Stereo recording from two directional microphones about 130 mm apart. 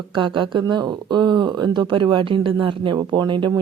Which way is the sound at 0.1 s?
40° right (ahead or behind).